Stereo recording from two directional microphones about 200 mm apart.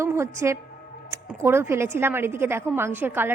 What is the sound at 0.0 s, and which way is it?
A woman's voice, 15° right (ahead or behind).